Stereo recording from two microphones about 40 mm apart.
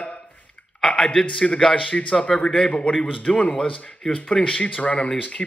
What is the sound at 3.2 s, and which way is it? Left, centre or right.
Speech, left.